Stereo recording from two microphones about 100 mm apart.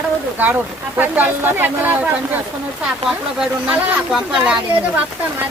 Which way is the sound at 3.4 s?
10° right (ahead or behind).